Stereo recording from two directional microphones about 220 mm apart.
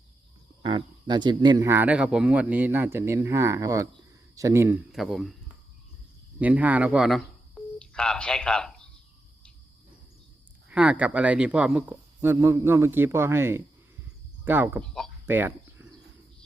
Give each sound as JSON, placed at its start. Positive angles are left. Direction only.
{"t": 0.6, "sound": "speech", "side_deg": -25}
{"t": 6.4, "sound": "speech", "side_deg": -5}
{"t": 10.7, "sound": "speech", "side_deg": -5}
{"t": 15.3, "sound": "a sound", "side_deg": -10}